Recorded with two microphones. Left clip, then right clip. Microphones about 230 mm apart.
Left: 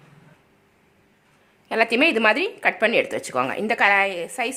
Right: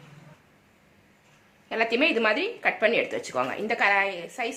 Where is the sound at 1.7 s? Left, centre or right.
Left.